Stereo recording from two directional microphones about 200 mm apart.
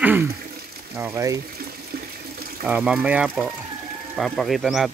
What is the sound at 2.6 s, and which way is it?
Speech, 5° right (ahead or behind).